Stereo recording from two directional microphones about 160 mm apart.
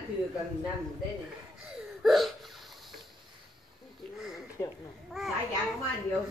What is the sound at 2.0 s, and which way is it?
Hiccup, centre (ahead or behind).